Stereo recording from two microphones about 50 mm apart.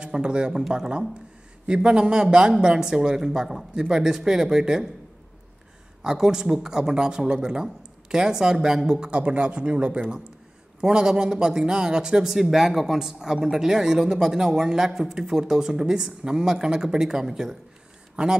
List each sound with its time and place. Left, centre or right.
0.0 s a man's voice: centre
6.0 s a man's voice: centre